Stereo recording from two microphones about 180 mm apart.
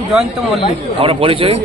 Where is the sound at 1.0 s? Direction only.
30° right (ahead or behind).